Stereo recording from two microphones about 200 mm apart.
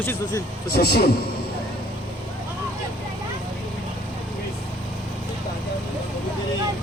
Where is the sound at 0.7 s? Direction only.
55° left (ahead or behind).